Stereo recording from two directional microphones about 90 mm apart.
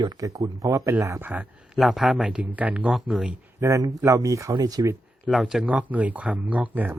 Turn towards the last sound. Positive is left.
turn(degrees=-15)  # may be behind; listen again after turning